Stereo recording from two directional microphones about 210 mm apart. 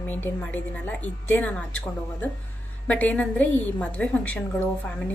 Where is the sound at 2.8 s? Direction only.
5° left (ahead or behind).